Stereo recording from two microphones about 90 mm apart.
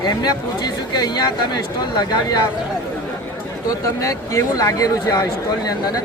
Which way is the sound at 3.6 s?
40° left (ahead or behind).